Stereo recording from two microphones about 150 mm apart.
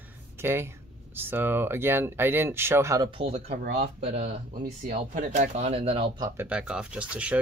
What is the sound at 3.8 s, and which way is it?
Speech, 45° right (ahead or behind).